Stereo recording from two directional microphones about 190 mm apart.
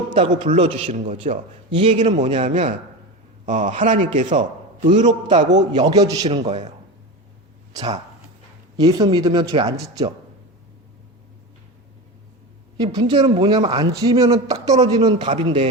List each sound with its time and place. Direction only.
0.1 s a man's voice: 30° right (ahead or behind)
5.7 s a man's voice: 20° right (ahead or behind)
6.2 s a man's voice: 35° right (ahead or behind)
8.8 s a man's voice: 20° right (ahead or behind)
12.7 s a man's voice: 25° right (ahead or behind)